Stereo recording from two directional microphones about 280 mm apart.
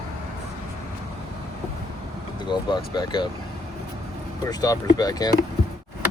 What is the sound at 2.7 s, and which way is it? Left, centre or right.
Speech, centre.